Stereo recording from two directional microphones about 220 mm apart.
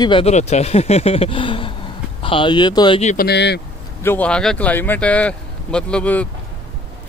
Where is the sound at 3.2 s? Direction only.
50° left (ahead or behind).